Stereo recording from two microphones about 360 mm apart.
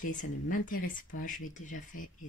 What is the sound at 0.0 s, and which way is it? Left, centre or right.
Speech, left.